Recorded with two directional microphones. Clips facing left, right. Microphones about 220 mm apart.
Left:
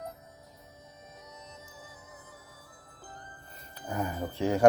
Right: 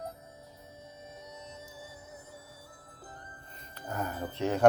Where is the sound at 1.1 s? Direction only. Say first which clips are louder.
Right 2 dB; 30° right (ahead or behind).